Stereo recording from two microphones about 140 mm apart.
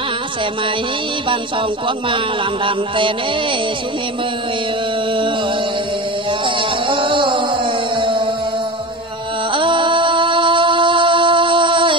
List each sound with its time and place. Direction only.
6.4 s music: 35° right (ahead or behind)
9.5 s music: 35° right (ahead or behind)